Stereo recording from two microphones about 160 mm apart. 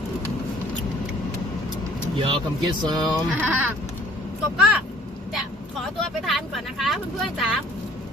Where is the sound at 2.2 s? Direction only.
30° right (ahead or behind).